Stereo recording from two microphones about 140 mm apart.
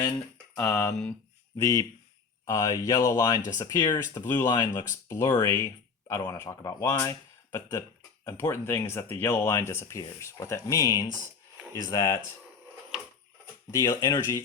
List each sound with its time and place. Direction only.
0.5 s speech: 20° left (ahead or behind)
13.7 s speech: 20° left (ahead or behind)